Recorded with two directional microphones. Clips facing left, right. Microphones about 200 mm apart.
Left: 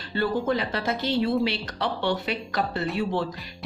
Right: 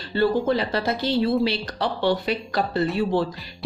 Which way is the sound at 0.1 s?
30° right (ahead or behind).